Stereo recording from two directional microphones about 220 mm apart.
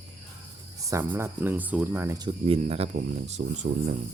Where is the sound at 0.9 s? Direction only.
10° right (ahead or behind); by 3.9 s 30° right (ahead or behind).